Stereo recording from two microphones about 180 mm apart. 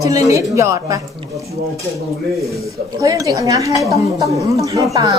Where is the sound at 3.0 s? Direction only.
20° right (ahead or behind).